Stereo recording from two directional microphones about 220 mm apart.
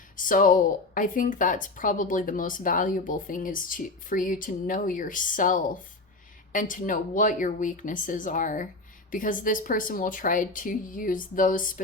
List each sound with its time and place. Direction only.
0.2 s speech: 40° left (ahead or behind)